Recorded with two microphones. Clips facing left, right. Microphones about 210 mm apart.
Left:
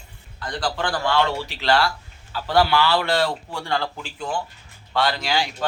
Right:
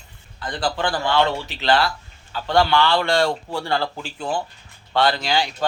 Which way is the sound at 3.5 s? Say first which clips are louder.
Right 2 dB; 30° right (ahead or behind).